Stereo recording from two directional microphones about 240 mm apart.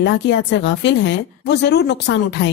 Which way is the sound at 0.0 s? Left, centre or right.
Left.